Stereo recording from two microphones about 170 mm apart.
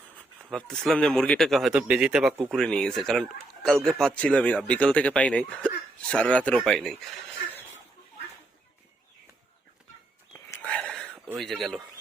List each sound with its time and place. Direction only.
0.5 s speech: 5° left (ahead or behind)
10.3 s whispering: 10° left (ahead or behind)
11.3 s speech: centre (ahead or behind)